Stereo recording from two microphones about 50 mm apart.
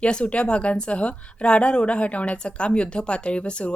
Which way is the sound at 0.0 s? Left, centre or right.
Left.